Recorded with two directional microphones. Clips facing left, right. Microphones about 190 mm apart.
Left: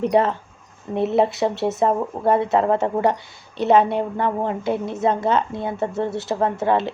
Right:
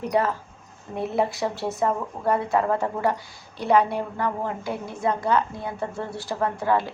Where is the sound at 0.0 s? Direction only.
25° left (ahead or behind).